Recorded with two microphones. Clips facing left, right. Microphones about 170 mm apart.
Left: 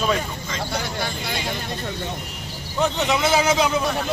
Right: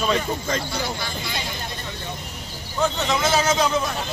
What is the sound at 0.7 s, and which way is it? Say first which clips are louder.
Speech: left 1 dB; 55° left (ahead or behind).